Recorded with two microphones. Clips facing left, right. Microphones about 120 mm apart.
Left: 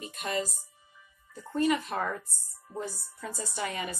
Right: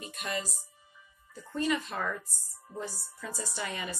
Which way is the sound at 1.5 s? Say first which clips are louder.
Left 4 dB; 45° left (ahead or behind).